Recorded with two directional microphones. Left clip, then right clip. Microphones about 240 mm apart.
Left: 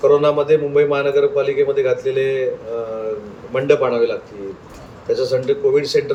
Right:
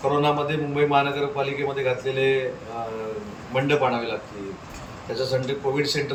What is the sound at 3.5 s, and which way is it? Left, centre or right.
Speech, centre.